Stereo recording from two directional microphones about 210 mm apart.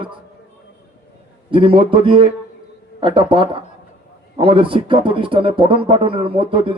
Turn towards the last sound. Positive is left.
turn(degrees=-25)  # may be behind; listen again after turning